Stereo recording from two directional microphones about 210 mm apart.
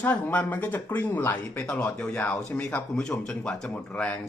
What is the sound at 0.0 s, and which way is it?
Speech, 10° left (ahead or behind).